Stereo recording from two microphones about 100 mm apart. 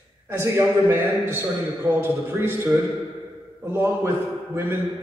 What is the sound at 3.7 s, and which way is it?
Speech, 25° right (ahead or behind).